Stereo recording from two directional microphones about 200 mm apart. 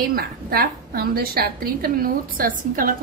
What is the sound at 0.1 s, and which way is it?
A woman's voice, 50° right (ahead or behind).